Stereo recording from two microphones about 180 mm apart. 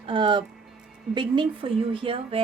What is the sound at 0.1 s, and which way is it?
Speech, 25° right (ahead or behind).